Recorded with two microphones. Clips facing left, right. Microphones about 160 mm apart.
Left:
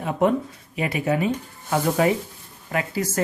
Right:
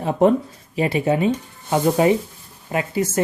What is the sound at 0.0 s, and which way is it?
Speech, 35° right (ahead or behind).